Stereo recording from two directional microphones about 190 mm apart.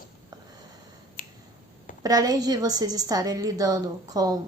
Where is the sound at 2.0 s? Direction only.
20° right (ahead or behind).